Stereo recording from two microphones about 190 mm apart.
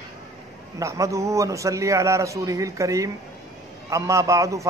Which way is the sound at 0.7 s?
15° right (ahead or behind).